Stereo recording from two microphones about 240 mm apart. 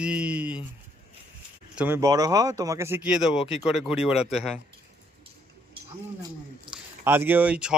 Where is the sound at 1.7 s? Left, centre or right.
Centre.